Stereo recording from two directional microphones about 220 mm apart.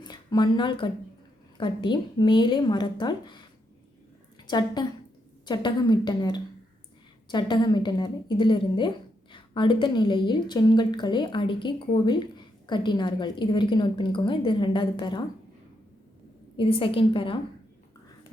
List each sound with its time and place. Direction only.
0.0 s a woman's voice: 20° left (ahead or behind)
4.4 s a woman's voice: 20° left (ahead or behind)
16.6 s a woman's voice: 25° left (ahead or behind)